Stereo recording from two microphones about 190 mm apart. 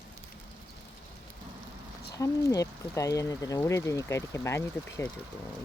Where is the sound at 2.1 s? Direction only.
20° left (ahead or behind).